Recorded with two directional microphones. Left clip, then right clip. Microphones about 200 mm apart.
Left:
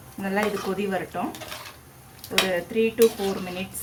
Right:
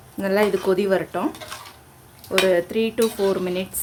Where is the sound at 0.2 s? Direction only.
55° right (ahead or behind).